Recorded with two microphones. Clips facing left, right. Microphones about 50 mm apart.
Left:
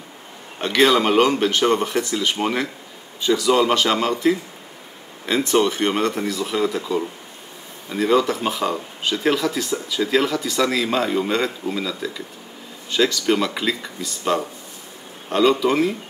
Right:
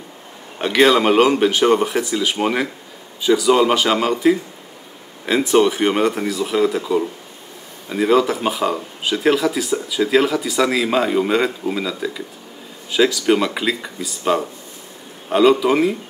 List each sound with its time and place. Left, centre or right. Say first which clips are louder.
0.6 s speech: right 2 dB; centre